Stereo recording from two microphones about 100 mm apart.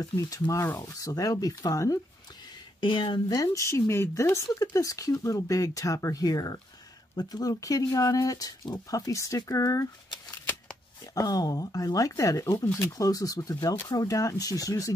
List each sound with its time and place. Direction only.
0.0 s speech: 35° left (ahead or behind)
2.8 s speech: 55° left (ahead or behind)
3.3 s speech: 30° left (ahead or behind)
11.1 s speech: 35° left (ahead or behind)